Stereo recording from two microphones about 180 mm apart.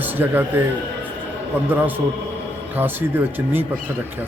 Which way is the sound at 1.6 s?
10° right (ahead or behind).